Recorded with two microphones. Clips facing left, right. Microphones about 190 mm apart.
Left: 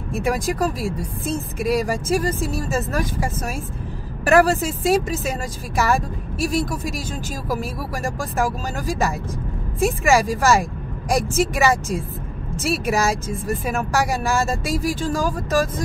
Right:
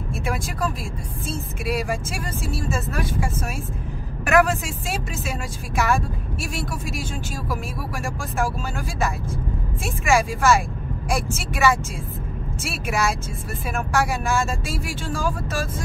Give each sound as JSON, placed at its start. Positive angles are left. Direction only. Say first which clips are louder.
{"t": 0.3, "sound": "speech", "louder": "left 6 dB", "side_deg": 40}